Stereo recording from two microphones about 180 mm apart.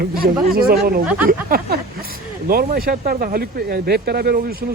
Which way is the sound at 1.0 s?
5° right (ahead or behind).